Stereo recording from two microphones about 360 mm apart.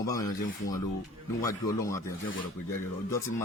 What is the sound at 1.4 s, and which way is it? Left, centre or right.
Speech, centre.